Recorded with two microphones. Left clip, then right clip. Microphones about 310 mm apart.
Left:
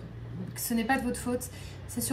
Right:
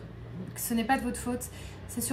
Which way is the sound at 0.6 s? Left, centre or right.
Centre.